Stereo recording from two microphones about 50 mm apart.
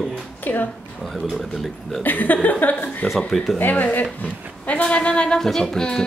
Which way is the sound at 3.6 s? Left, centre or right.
Left.